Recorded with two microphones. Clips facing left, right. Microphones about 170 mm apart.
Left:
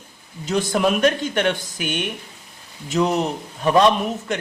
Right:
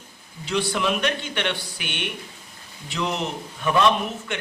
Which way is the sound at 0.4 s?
45° left (ahead or behind).